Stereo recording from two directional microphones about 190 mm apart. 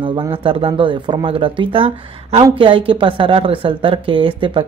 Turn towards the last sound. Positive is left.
turn(degrees=-25)  # may be behind; listen again after turning